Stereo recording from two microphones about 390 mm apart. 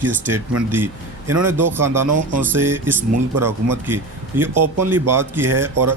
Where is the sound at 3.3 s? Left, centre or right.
Right.